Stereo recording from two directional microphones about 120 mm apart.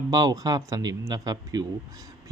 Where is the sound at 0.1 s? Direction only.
30° right (ahead or behind).